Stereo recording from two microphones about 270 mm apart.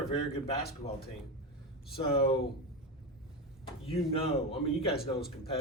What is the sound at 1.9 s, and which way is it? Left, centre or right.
Speech, centre.